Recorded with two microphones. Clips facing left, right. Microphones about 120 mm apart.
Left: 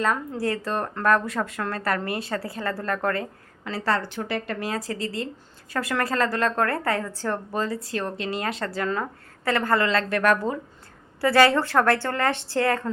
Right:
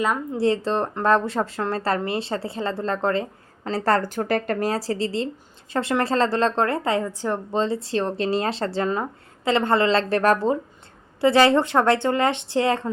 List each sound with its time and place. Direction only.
0.3 s a woman's voice: 25° right (ahead or behind)
3.6 s a woman's voice: 40° right (ahead or behind); by 12.9 s 20° right (ahead or behind)